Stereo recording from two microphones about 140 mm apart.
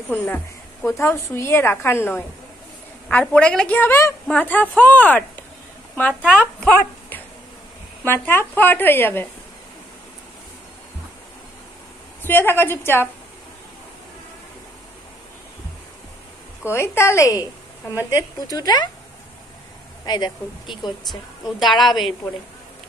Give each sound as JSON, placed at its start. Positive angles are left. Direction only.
{"t": 0.1, "sound": "a woman's voice", "side_deg": 15}
{"t": 12.2, "sound": "a woman's voice", "side_deg": 15}
{"t": 16.6, "sound": "a woman's voice", "side_deg": 15}
{"t": 20.1, "sound": "speech", "side_deg": 30}
{"t": 21.1, "sound": "a woman's voice", "side_deg": 0}